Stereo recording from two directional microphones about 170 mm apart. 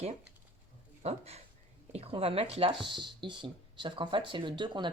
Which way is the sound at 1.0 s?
40° right (ahead or behind).